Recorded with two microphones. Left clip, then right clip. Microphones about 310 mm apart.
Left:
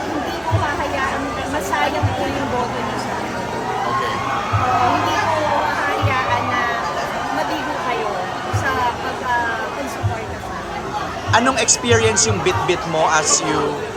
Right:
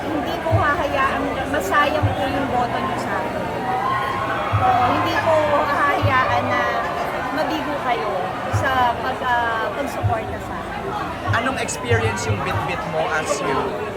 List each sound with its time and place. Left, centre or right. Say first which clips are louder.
11.9 s speech: left 4 dB; left